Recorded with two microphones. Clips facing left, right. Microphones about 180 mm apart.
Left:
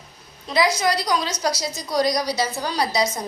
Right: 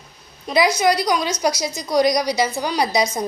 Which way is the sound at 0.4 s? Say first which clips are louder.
Right 3 dB; 20° right (ahead or behind).